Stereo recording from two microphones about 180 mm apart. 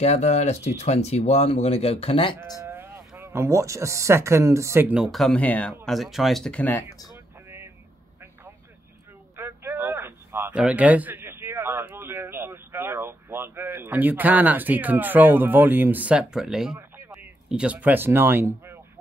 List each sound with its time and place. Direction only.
0.0 s speech: 35° left (ahead or behind)
2.6 s a sound: 10° right (ahead or behind)
3.2 s speech: 15° right (ahead or behind); by 6.8 s 10° left (ahead or behind)
7.4 s vehicle: 15° right (ahead or behind)
9.4 s a man's voice: 15° right (ahead or behind)